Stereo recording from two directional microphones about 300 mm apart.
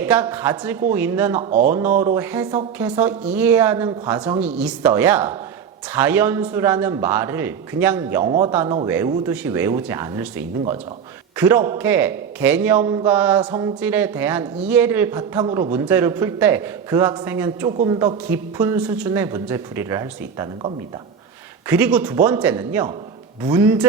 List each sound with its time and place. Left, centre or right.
0.0 s a man's voice: centre
1.4 s speech: right
2.1 s a man's voice: centre